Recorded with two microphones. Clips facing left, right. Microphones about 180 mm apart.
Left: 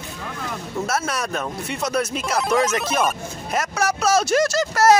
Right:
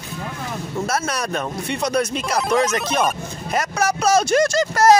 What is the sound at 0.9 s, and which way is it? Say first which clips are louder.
Speech: right 1 dB; centre (ahead or behind).